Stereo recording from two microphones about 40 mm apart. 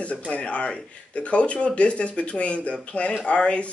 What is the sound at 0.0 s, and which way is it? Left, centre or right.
Speech, left.